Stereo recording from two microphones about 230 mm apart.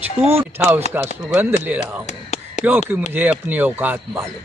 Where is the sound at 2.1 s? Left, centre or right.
Left.